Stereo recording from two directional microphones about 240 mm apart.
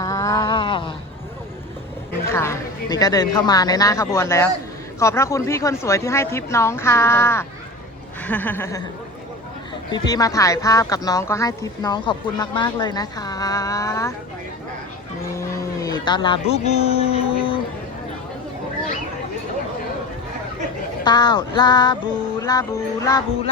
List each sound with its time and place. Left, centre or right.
0.0 s a sound: centre
2.2 s speech: centre
9.9 s speech: centre
15.4 s a man's voice: centre
21.0 s speech: centre